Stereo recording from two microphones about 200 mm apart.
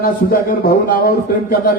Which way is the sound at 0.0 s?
45° left (ahead or behind).